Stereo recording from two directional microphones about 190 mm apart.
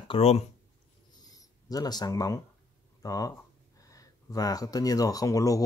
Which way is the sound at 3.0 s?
20° left (ahead or behind).